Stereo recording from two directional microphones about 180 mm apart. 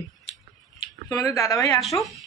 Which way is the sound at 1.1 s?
20° left (ahead or behind).